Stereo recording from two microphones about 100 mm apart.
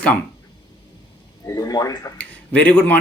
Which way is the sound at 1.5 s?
35° left (ahead or behind).